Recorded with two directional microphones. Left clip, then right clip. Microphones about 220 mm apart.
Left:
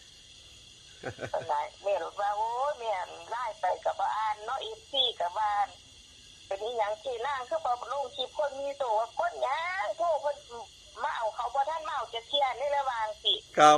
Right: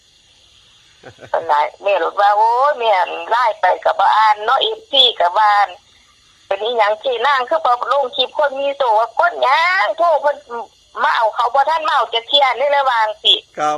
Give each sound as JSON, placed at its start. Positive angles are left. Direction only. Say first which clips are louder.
{"t": 1.3, "sound": "speech", "louder": "right 17 dB", "side_deg": -50}